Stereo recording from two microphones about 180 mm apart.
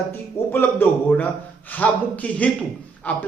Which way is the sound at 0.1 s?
10° left (ahead or behind).